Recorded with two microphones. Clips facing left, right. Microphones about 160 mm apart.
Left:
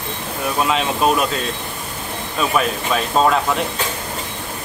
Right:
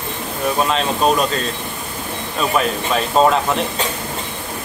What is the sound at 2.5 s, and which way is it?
Speech, centre (ahead or behind).